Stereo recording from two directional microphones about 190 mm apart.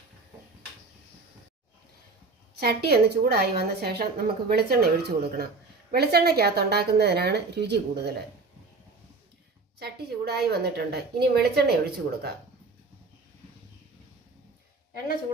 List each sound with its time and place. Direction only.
2.6 s a woman's voice: 55° right (ahead or behind)
9.7 s a woman's voice: 60° right (ahead or behind)